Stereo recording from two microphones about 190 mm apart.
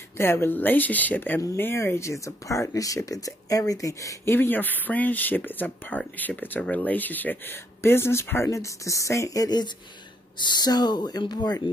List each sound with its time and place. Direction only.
0.2 s speech: 10° left (ahead or behind)